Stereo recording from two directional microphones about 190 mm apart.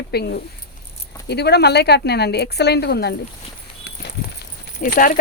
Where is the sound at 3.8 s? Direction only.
60° left (ahead or behind).